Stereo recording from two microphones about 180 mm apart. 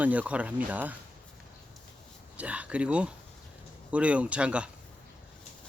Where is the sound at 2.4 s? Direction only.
5° right (ahead or behind).